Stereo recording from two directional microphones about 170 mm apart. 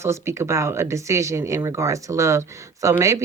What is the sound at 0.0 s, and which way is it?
Speech, 15° right (ahead or behind).